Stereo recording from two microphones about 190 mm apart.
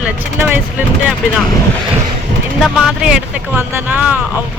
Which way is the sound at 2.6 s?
5° right (ahead or behind).